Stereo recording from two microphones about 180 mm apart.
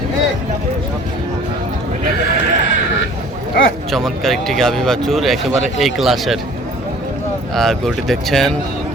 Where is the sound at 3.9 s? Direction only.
Centre (ahead or behind).